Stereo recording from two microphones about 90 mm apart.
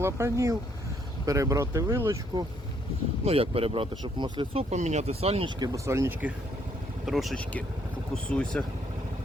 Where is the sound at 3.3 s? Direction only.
90° right.